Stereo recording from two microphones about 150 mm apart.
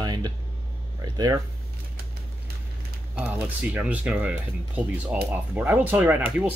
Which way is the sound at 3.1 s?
10° right (ahead or behind).